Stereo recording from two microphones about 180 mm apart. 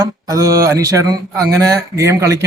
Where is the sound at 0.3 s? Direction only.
20° right (ahead or behind).